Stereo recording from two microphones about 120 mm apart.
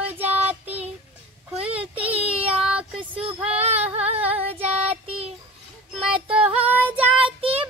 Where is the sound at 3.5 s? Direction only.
60° right (ahead or behind).